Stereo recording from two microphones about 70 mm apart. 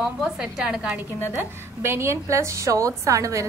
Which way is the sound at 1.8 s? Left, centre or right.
Right.